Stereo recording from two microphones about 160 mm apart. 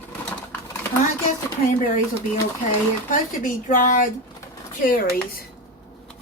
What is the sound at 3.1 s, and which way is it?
Speech, 55° left (ahead or behind).